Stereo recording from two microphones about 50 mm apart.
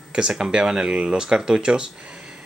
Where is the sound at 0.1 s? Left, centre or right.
Centre.